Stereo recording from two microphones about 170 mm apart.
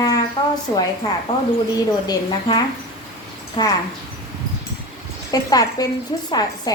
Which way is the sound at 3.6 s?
25° left (ahead or behind).